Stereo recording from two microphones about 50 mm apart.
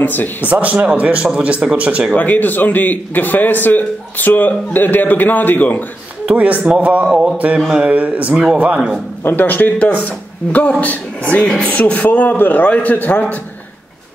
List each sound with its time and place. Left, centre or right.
0.0 s a man's voice: left
0.5 s a man's voice: right
2.1 s a man's voice: left
6.2 s a man's voice: right
7.1 s mantra: centre
7.3 s a man's voice: right
9.2 s a man's voice: left